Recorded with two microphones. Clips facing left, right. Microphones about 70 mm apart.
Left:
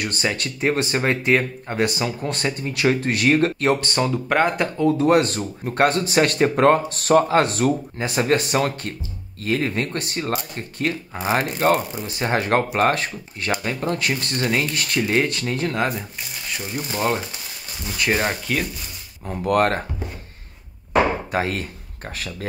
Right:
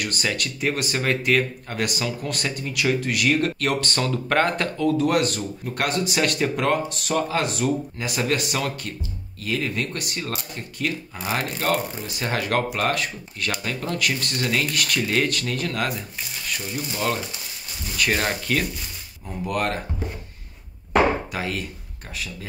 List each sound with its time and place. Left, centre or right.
0.0 s speech: left
4.7 s speech: left
17.9 s speech: left
19.2 s speech: left
21.3 s speech: left
22.1 s speech: left